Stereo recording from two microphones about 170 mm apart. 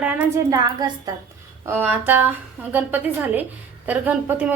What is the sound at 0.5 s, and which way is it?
Speech, 25° right (ahead or behind).